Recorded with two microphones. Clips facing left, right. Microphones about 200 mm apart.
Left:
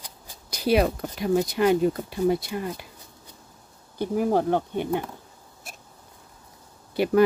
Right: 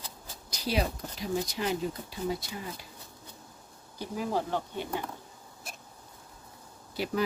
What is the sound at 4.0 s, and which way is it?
Speech, 55° left (ahead or behind).